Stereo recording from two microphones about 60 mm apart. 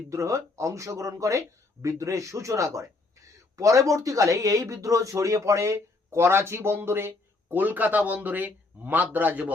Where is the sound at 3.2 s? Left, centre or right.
Right.